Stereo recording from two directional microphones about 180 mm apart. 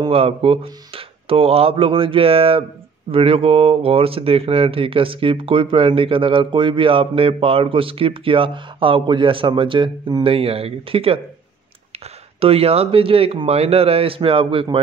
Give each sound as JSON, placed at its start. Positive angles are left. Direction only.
{"t": 0.0, "sound": "speech", "side_deg": -30}
{"t": 12.4, "sound": "speech", "side_deg": -35}